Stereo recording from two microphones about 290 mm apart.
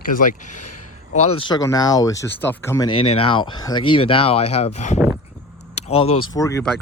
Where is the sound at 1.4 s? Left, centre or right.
Centre.